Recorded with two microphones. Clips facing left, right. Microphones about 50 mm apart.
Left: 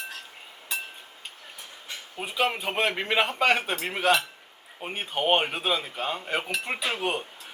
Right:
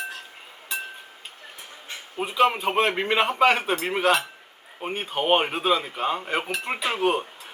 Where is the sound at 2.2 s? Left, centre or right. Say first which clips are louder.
Right 6 dB; centre.